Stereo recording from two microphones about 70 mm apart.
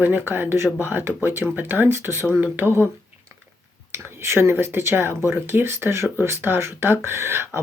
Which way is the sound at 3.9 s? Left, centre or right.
Right.